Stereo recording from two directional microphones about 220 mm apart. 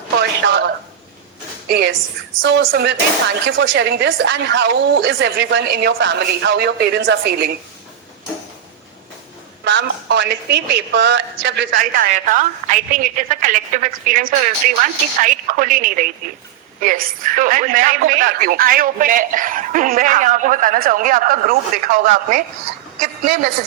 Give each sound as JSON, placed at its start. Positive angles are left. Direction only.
{"t": 0.2, "sound": "a sound", "side_deg": -50}
{"t": 1.6, "sound": "a woman's voice", "side_deg": -50}
{"t": 9.6, "sound": "a woman's voice", "side_deg": -55}
{"t": 11.7, "sound": "a woman's voice", "side_deg": -35}